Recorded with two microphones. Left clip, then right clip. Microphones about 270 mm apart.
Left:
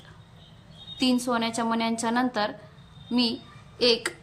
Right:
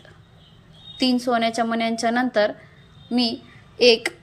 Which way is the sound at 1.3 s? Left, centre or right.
Centre.